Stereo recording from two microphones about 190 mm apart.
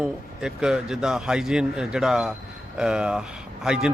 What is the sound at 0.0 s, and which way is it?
Speech, 5° right (ahead or behind).